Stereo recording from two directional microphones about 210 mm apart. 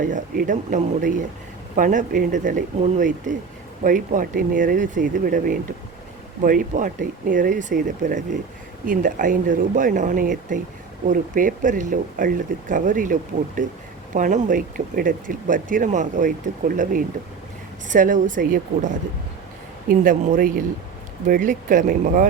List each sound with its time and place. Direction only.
0.0 s speech: 40° right (ahead or behind)